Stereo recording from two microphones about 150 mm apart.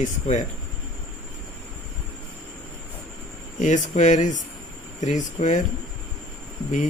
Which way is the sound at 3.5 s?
55° left (ahead or behind).